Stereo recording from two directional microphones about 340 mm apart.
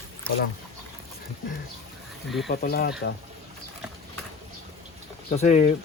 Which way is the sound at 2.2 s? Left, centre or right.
Centre.